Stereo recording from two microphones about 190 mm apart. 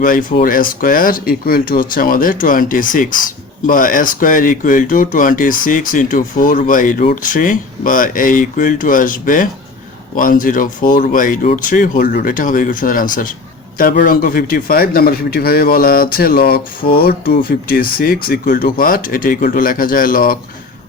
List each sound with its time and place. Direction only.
0.0 s a man's voice: 45° left (ahead or behind)